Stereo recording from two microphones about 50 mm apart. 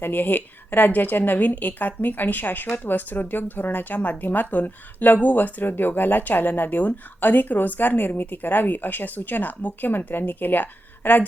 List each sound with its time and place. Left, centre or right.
0.0 s speech: left